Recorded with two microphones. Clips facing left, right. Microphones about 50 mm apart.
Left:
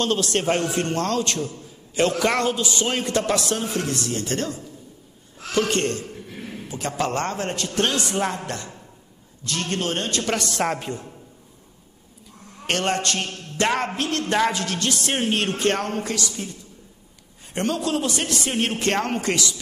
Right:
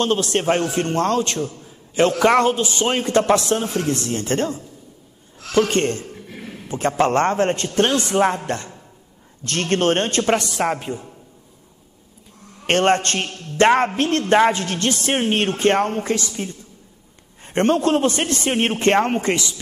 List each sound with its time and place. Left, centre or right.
0.0 s a man's voice: centre
6.3 s a sound: centre
6.7 s speech: right
9.4 s a man's voice: right
10.5 s a man's voice: centre
12.6 s speech: right
17.5 s speech: right